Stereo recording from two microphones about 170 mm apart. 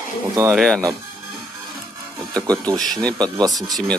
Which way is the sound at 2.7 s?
Centre (ahead or behind).